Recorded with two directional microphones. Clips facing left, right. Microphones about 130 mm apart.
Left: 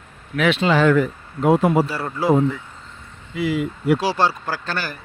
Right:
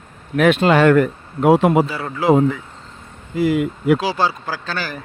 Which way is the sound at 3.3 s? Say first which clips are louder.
Right 5 dB; 50° right (ahead or behind).